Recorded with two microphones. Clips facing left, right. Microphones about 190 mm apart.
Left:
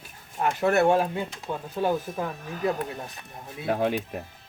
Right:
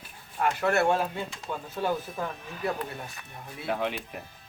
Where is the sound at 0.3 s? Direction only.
20° left (ahead or behind).